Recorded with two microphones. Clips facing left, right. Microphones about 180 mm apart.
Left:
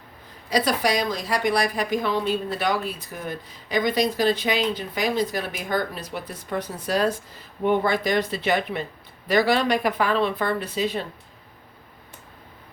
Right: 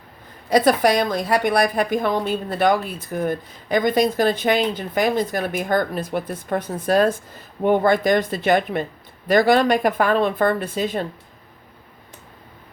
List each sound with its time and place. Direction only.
0.5 s a woman's voice: 55° right (ahead or behind)